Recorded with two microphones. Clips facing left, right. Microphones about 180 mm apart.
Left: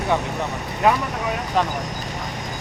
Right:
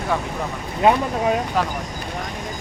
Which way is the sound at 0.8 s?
25° right (ahead or behind).